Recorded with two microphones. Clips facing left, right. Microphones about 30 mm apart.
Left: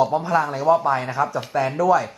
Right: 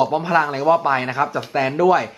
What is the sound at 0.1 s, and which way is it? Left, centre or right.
Speech, right.